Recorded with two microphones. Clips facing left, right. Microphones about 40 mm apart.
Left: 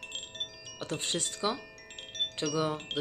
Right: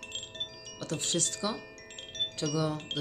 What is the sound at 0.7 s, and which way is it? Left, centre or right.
Speech, left.